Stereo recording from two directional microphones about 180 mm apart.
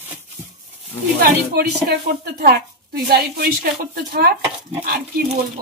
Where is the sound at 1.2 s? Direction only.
60° right (ahead or behind).